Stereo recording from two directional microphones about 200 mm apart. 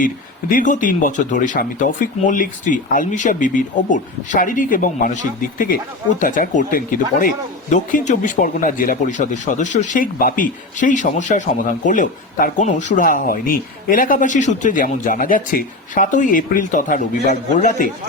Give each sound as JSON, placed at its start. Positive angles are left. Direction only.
{"t": 0.0, "sound": "speech", "side_deg": 40}